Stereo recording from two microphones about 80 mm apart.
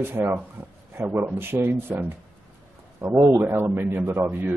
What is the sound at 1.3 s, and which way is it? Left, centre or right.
A man's voice, right.